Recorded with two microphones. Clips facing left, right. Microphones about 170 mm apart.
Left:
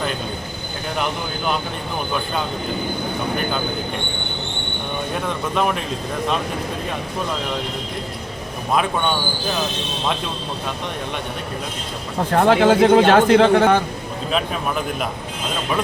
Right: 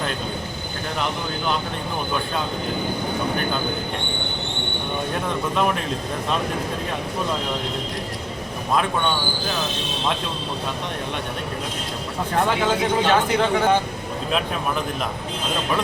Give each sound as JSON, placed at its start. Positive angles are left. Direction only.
{"t": 12.3, "sound": "speech", "side_deg": 60}